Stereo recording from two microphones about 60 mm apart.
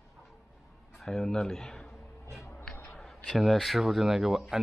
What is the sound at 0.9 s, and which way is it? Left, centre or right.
Speech, centre.